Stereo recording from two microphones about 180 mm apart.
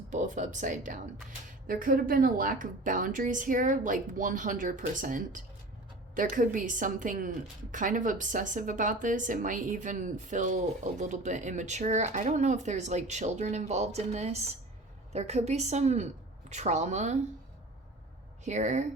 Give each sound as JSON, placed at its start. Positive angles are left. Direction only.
{"t": 0.1, "sound": "a woman's voice", "side_deg": -45}
{"t": 18.4, "sound": "a woman's voice", "side_deg": -40}